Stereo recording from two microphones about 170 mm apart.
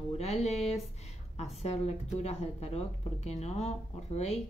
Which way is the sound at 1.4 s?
40° left (ahead or behind).